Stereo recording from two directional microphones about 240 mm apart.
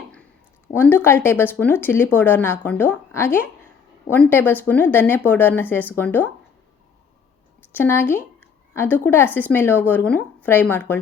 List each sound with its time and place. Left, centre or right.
0.8 s speech: centre
7.7 s speech: centre